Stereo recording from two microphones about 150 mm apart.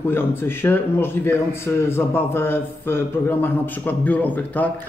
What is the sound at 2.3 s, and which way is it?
Speech, 15° left (ahead or behind).